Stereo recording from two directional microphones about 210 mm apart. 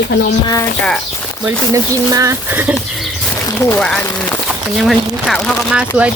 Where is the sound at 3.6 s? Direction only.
10° left (ahead or behind).